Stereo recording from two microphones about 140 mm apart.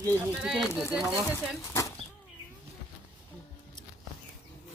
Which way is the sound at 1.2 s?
20° left (ahead or behind).